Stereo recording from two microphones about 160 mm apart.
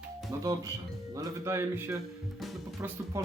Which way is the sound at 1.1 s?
15° right (ahead or behind).